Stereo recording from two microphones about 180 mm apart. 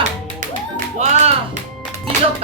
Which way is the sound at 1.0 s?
40° right (ahead or behind).